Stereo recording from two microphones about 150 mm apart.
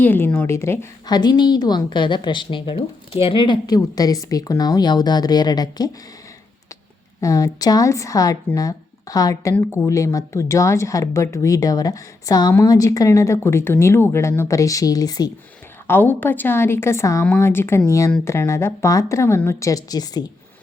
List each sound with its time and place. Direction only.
0.0 s a woman's voice: 15° left (ahead or behind)
7.2 s a woman's voice: 20° left (ahead or behind)
15.9 s a woman's voice: 15° left (ahead or behind)